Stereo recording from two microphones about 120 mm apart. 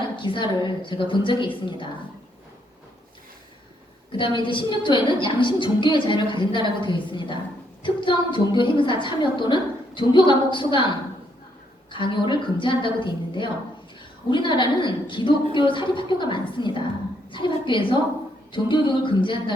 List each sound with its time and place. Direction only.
0.2 s a woman's voice: 40° left (ahead or behind)
4.2 s a woman's voice: 45° left (ahead or behind)